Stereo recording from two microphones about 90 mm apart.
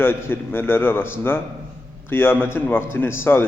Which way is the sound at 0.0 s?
25° left (ahead or behind).